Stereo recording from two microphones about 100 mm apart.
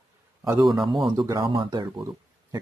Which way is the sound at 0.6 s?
5° right (ahead or behind).